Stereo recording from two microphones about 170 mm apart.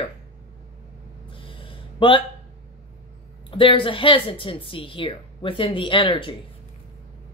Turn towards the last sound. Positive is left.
turn(degrees=30)  # may be behind; listen again after turning